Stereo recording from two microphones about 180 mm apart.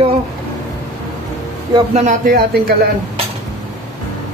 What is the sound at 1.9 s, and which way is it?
Speech, 45° right (ahead or behind).